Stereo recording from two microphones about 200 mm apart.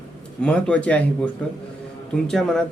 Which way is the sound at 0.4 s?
5° left (ahead or behind).